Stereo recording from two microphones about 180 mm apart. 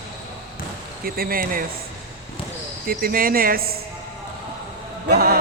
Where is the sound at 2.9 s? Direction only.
55° right (ahead or behind).